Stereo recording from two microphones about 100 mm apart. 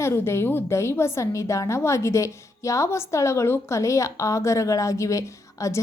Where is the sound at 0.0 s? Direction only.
25° left (ahead or behind).